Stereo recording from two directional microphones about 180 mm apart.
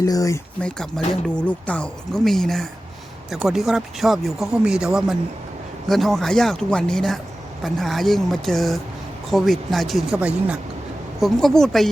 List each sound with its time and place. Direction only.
0.0 s speech: 20° left (ahead or behind)
0.6 s speech: 5° left (ahead or behind)